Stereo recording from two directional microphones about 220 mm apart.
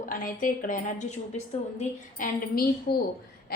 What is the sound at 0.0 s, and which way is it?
A woman's voice, 40° left (ahead or behind).